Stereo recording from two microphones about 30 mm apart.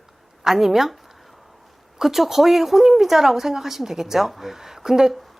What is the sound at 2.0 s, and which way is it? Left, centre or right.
A woman's voice, centre.